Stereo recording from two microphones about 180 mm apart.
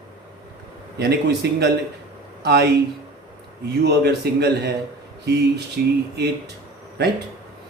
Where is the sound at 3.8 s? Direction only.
65° right (ahead or behind).